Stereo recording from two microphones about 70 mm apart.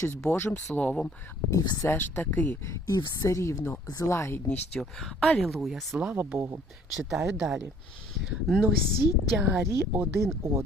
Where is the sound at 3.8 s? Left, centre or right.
Left.